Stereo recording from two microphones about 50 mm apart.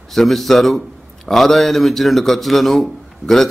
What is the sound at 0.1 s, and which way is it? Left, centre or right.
A man's voice, centre.